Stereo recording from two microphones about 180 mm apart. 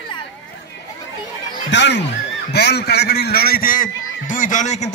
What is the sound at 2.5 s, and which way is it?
A man's voice, 65° left (ahead or behind).